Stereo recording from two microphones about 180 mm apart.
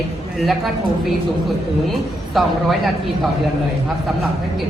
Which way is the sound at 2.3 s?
Centre (ahead or behind).